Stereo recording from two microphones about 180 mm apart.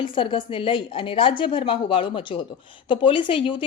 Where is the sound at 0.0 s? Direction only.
30° left (ahead or behind).